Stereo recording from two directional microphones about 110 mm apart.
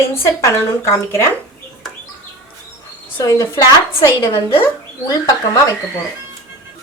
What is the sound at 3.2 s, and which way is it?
Speech, 30° left (ahead or behind).